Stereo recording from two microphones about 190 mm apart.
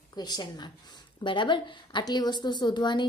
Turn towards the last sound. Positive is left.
turn(degrees=25)  # may be behind; listen again after turning